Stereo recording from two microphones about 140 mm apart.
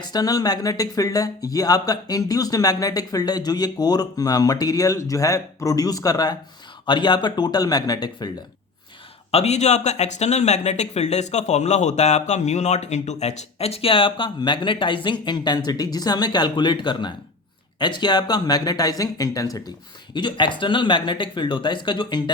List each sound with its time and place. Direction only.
0.0 s speech: 30° left (ahead or behind)
9.3 s speech: 50° left (ahead or behind); by 22.2 s 35° left (ahead or behind)